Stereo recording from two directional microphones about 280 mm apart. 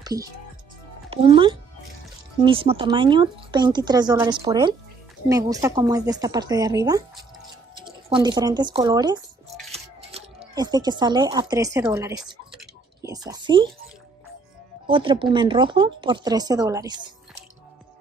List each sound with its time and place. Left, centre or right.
0.0 s speech: centre
9.7 s a sound: right
13.1 s speech: centre
14.9 s speech: centre